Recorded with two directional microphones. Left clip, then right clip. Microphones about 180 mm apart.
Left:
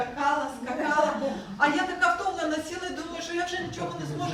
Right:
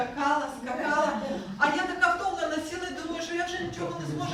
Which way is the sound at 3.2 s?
15° left (ahead or behind).